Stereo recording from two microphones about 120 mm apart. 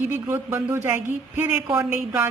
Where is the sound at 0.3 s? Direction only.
20° right (ahead or behind).